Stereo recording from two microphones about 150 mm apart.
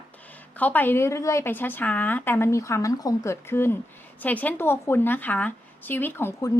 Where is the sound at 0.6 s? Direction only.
10° left (ahead or behind).